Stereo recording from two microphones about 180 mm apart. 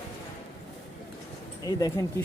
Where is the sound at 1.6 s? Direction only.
20° left (ahead or behind).